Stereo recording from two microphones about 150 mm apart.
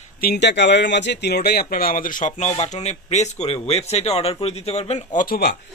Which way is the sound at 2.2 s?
50° left (ahead or behind).